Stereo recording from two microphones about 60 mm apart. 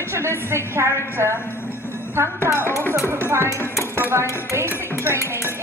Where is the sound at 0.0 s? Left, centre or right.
Right.